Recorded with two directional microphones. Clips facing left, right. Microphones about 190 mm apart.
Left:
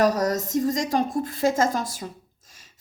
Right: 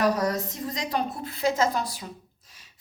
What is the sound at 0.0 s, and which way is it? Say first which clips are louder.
A woman's voice: left 3 dB; 40° left (ahead or behind).